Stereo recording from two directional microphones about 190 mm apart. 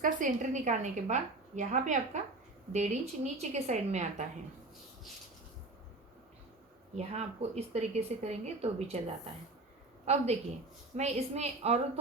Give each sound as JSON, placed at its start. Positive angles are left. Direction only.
{"t": 0.0, "sound": "speech", "side_deg": -40}
{"t": 6.9, "sound": "speech", "side_deg": -35}